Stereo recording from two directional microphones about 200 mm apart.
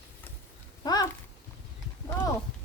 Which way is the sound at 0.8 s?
20° left (ahead or behind).